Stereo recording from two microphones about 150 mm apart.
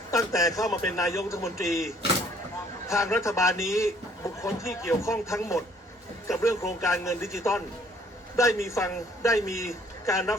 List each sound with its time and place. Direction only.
0.1 s a man's voice: 20° left (ahead or behind)
2.8 s a man's voice: 20° left (ahead or behind)